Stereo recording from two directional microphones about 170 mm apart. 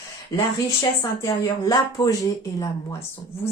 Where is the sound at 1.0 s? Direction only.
20° left (ahead or behind).